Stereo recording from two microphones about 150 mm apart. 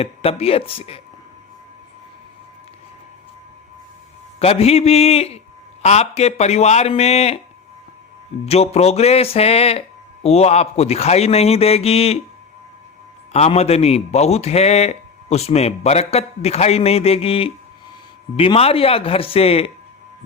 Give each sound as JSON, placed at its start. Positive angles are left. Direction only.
{"t": 0.0, "sound": "speech", "side_deg": 40}
{"t": 4.4, "sound": "a man's voice", "side_deg": 45}
{"t": 8.4, "sound": "a man's voice", "side_deg": 45}
{"t": 13.3, "sound": "a man's voice", "side_deg": 45}